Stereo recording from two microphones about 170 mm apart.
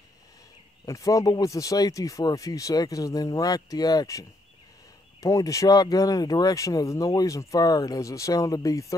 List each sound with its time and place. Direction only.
0.8 s speech: 20° left (ahead or behind)